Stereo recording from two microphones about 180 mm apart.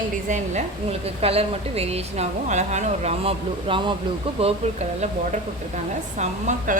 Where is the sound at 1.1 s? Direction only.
35° right (ahead or behind).